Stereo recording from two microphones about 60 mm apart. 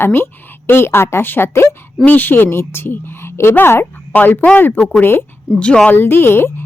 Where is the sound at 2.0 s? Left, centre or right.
Left.